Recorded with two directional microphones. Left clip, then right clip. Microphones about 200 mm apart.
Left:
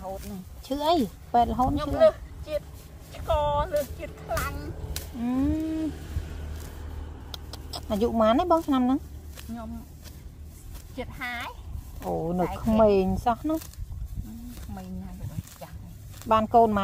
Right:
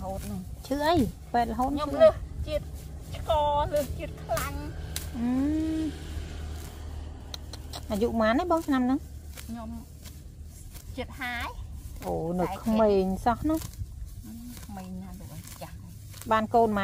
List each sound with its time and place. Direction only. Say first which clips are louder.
0.2 s speech: right 1 dB; 10° left (ahead or behind)
5.8 s a sound: left 1 dB; 40° right (ahead or behind)
7.9 s speech: left 3 dB; 10° left (ahead or behind)
11.0 s speech: even; 15° left (ahead or behind)
16.3 s speech: left 3 dB; 10° left (ahead or behind)